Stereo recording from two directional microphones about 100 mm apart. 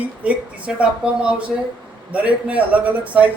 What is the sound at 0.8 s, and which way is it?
A man's voice, 10° right (ahead or behind).